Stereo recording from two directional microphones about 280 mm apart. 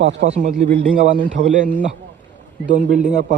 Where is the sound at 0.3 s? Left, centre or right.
Right.